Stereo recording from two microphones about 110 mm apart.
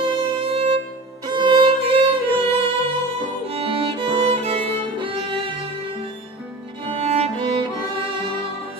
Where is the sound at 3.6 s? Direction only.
55° right (ahead or behind).